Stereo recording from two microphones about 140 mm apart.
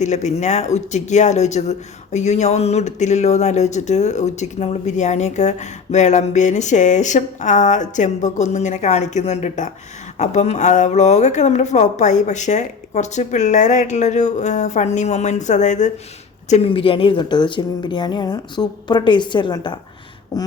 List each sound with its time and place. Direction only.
0.0 s speech: 55° left (ahead or behind)
16.5 s a woman's voice: 45° left (ahead or behind)
20.3 s a sound: 25° left (ahead or behind)